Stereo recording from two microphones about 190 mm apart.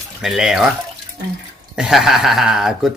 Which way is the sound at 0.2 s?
Centre (ahead or behind).